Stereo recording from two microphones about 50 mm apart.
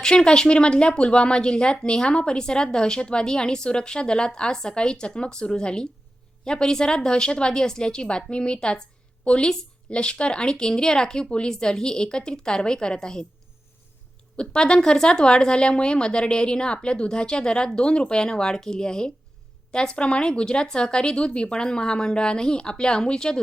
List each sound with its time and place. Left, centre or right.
0.0 s a woman's voice: centre
14.3 s speech: centre